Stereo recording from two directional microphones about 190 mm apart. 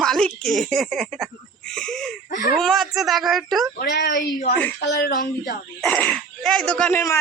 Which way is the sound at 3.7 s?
60° left (ahead or behind).